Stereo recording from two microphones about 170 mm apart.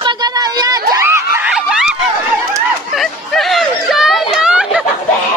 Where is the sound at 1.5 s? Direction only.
5° right (ahead or behind).